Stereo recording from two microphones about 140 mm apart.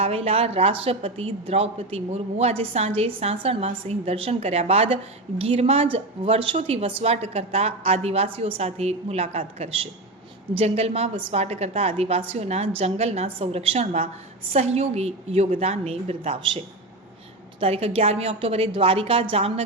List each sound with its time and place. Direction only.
0.0 s speech: 45° right (ahead or behind)